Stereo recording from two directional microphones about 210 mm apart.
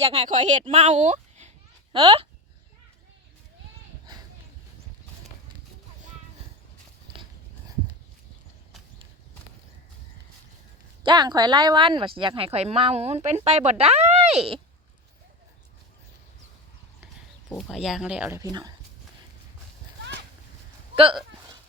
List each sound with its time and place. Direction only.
0.0 s a child's voice: 30° right (ahead or behind)
11.0 s speech: 20° right (ahead or behind)
17.6 s speech: centre (ahead or behind)
20.9 s speech: 25° right (ahead or behind)